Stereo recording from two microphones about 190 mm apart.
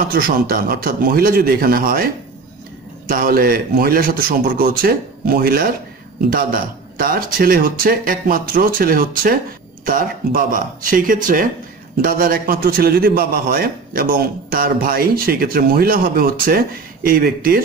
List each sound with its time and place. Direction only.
0.1 s a man's voice: 50° right (ahead or behind)
3.1 s a man's voice: 50° right (ahead or behind)